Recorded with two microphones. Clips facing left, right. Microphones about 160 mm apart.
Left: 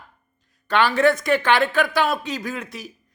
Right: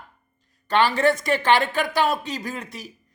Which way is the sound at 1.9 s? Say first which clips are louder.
Even; 35° right (ahead or behind).